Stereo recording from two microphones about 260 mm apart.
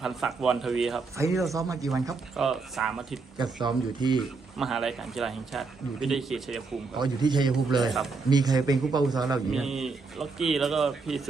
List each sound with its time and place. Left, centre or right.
0.0 s speech: centre
1.5 s a man's voice: centre
2.3 s speech: centre
3.3 s a man's voice: centre
4.2 s speech: centre
6.9 s a man's voice: centre
9.5 s speech: centre